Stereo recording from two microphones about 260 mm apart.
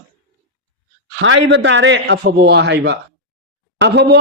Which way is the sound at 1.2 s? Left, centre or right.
Right.